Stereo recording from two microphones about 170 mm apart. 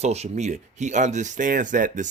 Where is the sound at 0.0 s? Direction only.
40° right (ahead or behind).